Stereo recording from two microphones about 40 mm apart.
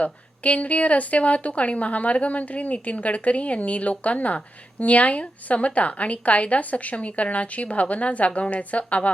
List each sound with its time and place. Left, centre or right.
0.0 s speech: left